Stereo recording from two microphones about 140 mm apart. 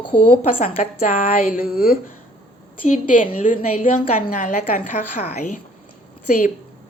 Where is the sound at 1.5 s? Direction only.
90° left.